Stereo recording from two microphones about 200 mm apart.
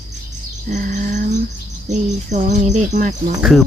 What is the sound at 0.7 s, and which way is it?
Speech, 40° right (ahead or behind).